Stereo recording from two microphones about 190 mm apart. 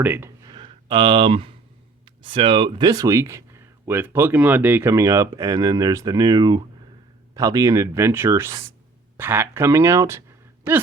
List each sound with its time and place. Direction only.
0.0 s speech: 10° right (ahead or behind)